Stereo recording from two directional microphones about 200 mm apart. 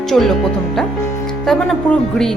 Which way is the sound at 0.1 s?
Centre (ahead or behind).